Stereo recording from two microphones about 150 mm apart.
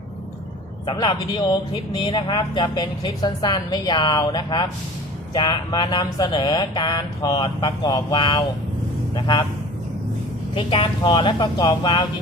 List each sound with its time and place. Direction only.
0.9 s speech: 30° left (ahead or behind)
10.5 s speech: 35° left (ahead or behind)